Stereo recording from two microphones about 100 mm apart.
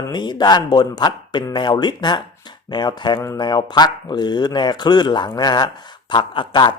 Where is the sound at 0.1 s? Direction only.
45° left (ahead or behind).